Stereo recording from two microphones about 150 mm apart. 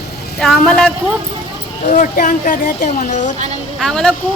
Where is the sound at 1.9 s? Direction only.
60° left (ahead or behind).